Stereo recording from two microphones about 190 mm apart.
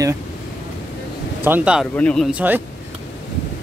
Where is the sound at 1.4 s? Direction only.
10° right (ahead or behind).